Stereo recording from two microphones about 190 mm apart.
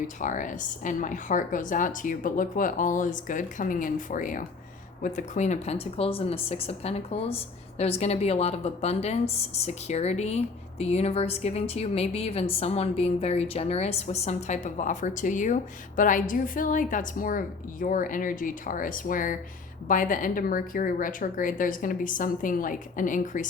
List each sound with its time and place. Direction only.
0.2 s a woman's voice: 40° left (ahead or behind)